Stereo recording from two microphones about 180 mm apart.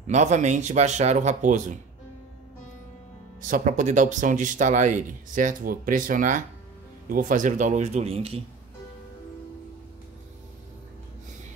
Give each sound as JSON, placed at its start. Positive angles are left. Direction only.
{"t": 0.0, "sound": "speech", "side_deg": -40}
{"t": 3.3, "sound": "speech", "side_deg": -45}